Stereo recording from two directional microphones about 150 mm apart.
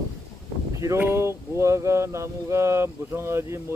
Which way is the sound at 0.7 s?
20° right (ahead or behind).